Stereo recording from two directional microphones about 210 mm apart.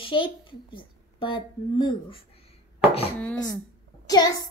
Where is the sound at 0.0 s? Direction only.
25° left (ahead or behind).